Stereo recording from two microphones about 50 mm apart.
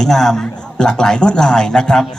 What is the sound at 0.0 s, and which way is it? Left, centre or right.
A man's voice, centre.